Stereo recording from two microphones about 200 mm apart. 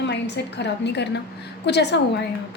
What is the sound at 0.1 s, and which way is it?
A woman's voice, 60° left (ahead or behind).